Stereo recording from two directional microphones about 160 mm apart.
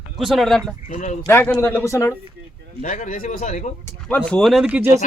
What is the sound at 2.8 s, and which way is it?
Speech, 55° left (ahead or behind).